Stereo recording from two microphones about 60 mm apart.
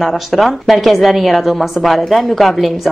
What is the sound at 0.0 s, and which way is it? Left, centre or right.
A woman's voice, centre.